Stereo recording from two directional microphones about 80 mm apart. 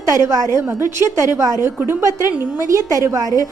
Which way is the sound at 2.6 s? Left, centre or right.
Right.